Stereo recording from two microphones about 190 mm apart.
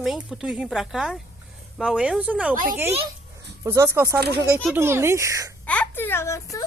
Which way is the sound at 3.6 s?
15° right (ahead or behind).